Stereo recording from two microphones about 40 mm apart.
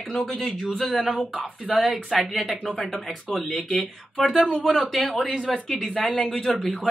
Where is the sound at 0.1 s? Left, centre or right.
Centre.